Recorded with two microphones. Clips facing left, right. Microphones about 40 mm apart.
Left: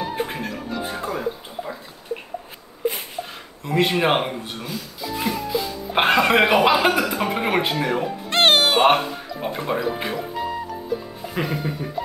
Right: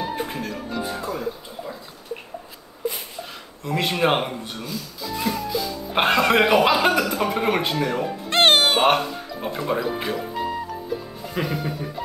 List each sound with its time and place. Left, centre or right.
0.1 s music: centre
0.5 s music: centre
0.8 s music: left
3.6 s speech: centre
8.3 s music: centre
9.7 s speech: centre